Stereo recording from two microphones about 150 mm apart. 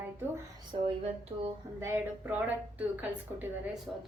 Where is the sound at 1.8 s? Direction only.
15° right (ahead or behind).